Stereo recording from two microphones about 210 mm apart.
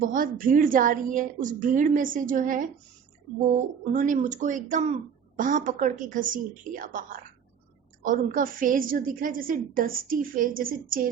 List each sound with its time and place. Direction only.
0.1 s a woman's voice: 40° right (ahead or behind)
3.9 s a woman's voice: 40° right (ahead or behind)
8.0 s a woman's voice: 40° right (ahead or behind)